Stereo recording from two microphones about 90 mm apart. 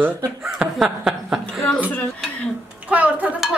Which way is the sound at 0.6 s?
5° right (ahead or behind).